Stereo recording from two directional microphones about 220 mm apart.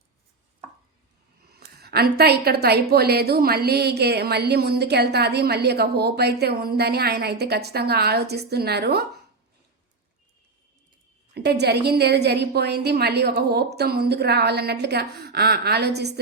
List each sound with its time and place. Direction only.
1.5 s a woman's voice: 45° right (ahead or behind)
11.3 s a woman's voice: 50° right (ahead or behind)